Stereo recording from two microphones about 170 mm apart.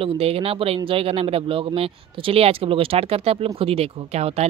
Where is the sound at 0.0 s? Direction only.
35° right (ahead or behind).